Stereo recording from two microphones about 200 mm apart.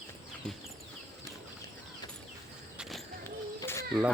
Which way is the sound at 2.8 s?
Centre (ahead or behind).